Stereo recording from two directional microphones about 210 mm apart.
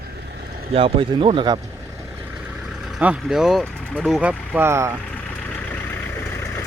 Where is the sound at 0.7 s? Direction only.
25° right (ahead or behind).